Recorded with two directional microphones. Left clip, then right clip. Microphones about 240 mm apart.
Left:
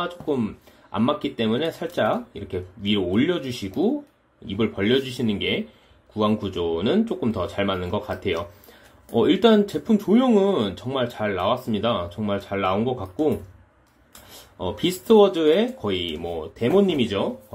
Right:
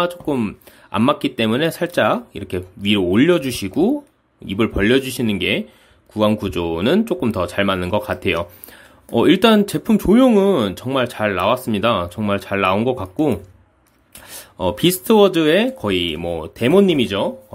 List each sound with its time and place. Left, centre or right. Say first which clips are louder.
0.0 s speech: right 6 dB; right
14.6 s speech: right 8 dB; right